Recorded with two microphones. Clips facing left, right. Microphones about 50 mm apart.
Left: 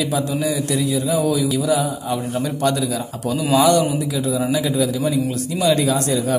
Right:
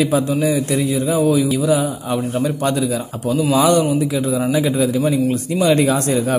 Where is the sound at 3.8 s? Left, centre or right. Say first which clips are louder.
Right 3 dB; right.